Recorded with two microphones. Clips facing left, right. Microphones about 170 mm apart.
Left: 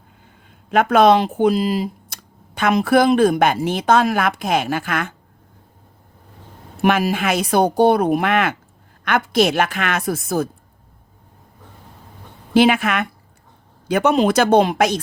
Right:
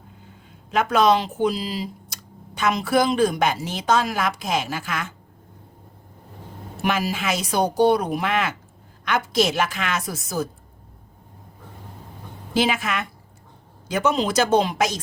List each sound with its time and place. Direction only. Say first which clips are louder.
0.7 s a woman's voice: left 5 dB; 55° left (ahead or behind)
6.8 s a woman's voice: left 6 dB; 60° left (ahead or behind)
12.5 s a woman's voice: left 7 dB; 60° left (ahead or behind)